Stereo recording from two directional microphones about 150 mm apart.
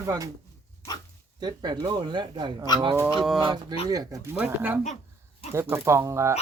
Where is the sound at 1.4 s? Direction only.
30° right (ahead or behind).